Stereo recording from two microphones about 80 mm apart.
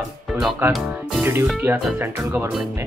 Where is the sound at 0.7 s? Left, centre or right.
Centre.